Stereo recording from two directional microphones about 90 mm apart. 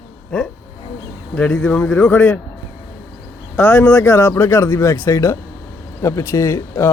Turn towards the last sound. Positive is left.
turn(degrees=35)  # may be behind; listen again after turning